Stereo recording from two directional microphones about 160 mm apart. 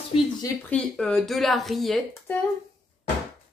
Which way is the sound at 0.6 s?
5° left (ahead or behind).